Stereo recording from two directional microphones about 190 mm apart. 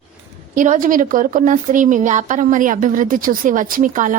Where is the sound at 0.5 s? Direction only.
45° right (ahead or behind).